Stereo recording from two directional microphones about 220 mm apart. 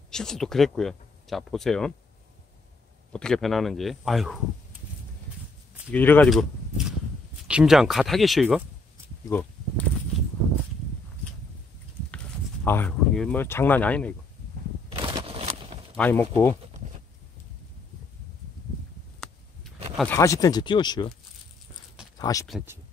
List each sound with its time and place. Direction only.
0.1 s speech: 5° left (ahead or behind)
3.1 s speech: 5° left (ahead or behind)
5.9 s speech: 10° left (ahead or behind)
7.4 s speech: 5° right (ahead or behind)
9.3 s a sound: 10° left (ahead or behind)
12.6 s speech: 10° left (ahead or behind)
14.9 s a sound: 20° right (ahead or behind)
16.0 s speech: 10° left (ahead or behind)
20.0 s speech: 10° left (ahead or behind)
22.2 s speech: 15° left (ahead or behind)